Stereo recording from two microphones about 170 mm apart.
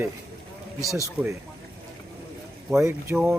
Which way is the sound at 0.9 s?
20° right (ahead or behind).